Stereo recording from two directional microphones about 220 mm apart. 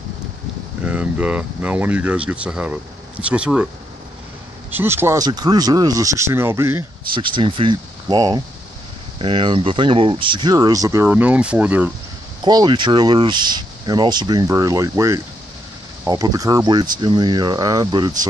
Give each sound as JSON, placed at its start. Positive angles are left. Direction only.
{"t": 0.8, "sound": "speech", "side_deg": -5}
{"t": 4.6, "sound": "speech", "side_deg": -10}
{"t": 12.4, "sound": "speech", "side_deg": -20}